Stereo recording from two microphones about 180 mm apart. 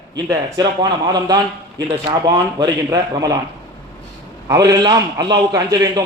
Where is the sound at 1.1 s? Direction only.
20° right (ahead or behind).